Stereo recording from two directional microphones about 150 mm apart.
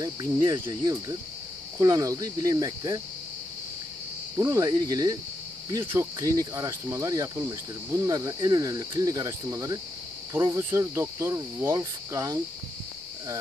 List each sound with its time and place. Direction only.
0.0 s speech: 25° right (ahead or behind)
4.4 s speech: 20° right (ahead or behind)